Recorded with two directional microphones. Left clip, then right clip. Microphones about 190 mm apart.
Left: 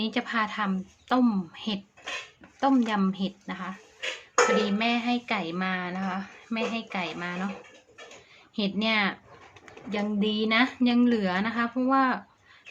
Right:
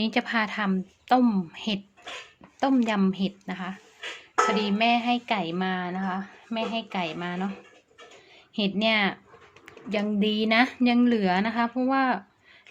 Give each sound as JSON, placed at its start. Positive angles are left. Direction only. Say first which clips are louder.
{"t": 0.0, "sound": "speech", "louder": "right 2 dB", "side_deg": -40}
{"t": 8.5, "sound": "speech", "louder": "right 2 dB", "side_deg": -30}